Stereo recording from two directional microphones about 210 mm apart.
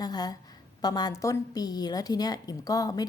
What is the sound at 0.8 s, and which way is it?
A woman's voice, 20° left (ahead or behind).